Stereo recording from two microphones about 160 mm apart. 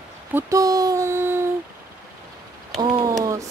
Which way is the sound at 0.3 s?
15° right (ahead or behind).